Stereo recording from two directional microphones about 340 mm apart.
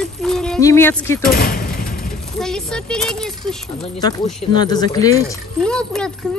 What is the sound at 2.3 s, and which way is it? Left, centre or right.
Speech, centre.